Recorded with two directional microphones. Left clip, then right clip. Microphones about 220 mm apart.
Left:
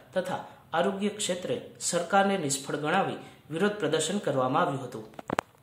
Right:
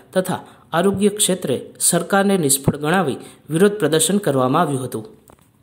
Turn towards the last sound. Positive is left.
turn(degrees=-45)  # may be behind; listen again after turning